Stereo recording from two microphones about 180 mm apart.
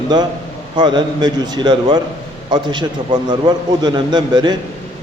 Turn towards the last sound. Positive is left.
turn(degrees=-25)  # may be behind; listen again after turning